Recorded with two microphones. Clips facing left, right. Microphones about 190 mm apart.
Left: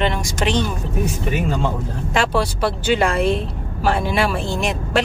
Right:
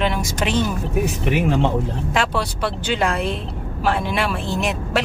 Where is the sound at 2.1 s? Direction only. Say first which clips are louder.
Left 4 dB; centre (ahead or behind).